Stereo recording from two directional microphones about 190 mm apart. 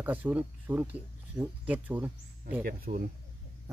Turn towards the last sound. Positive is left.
turn(degrees=-50)  # may be behind; listen again after turning